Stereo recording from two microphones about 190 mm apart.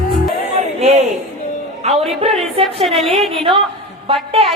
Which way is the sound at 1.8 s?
30° right (ahead or behind).